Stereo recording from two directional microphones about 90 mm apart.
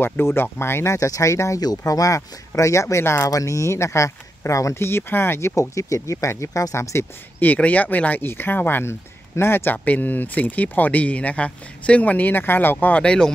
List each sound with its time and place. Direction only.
0.0 s speech: 25° left (ahead or behind)
0.9 s speech: 40° left (ahead or behind)
5.6 s speech: 35° left (ahead or behind)
7.4 s speech: 15° left (ahead or behind)